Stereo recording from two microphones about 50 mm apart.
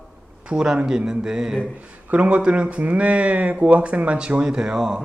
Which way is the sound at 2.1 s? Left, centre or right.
Right.